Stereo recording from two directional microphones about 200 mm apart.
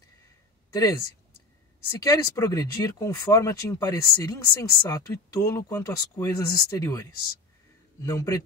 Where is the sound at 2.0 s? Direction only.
15° left (ahead or behind).